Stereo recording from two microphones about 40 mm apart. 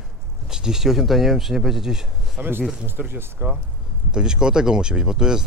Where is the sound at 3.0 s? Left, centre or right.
Right.